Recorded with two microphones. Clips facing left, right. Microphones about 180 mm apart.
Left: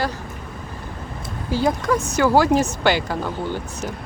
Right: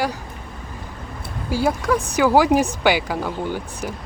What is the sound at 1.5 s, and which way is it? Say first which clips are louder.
Speech: even; 10° right (ahead or behind).